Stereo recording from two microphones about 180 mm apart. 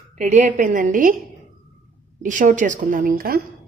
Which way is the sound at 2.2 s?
45° right (ahead or behind).